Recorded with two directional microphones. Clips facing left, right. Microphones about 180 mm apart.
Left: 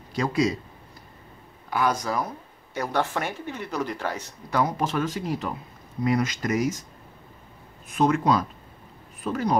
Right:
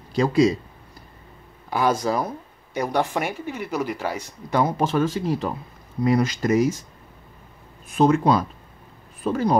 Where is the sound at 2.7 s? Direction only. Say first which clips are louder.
Right 3 dB; 15° right (ahead or behind).